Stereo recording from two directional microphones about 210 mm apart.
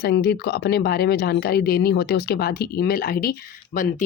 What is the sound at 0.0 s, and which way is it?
Speech, 50° left (ahead or behind).